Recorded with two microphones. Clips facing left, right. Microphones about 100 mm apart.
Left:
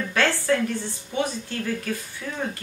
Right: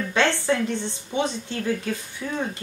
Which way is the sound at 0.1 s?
20° right (ahead or behind).